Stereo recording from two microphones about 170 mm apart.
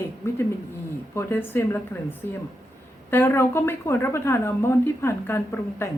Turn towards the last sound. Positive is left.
turn(degrees=15)  # may be behind; listen again after turning